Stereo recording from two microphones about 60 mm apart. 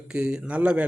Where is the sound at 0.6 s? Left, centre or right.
Right.